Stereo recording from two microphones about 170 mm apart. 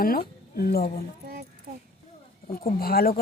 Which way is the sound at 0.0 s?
60° left (ahead or behind).